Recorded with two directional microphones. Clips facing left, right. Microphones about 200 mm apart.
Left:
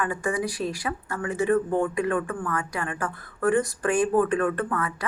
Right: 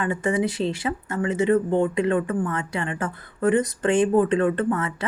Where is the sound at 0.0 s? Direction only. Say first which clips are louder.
Right 4 dB; 25° right (ahead or behind).